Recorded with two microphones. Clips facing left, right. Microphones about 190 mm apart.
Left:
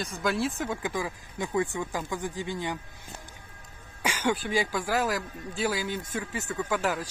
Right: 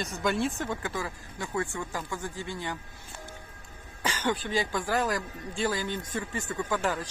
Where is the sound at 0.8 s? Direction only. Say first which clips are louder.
Left 3 dB; 15° left (ahead or behind).